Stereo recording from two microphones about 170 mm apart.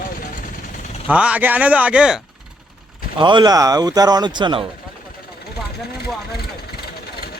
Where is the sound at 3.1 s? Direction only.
25° right (ahead or behind).